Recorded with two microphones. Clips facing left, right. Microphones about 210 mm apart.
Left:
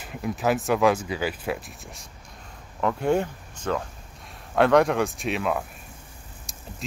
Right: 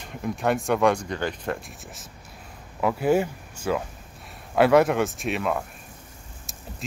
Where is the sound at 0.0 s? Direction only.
5° left (ahead or behind).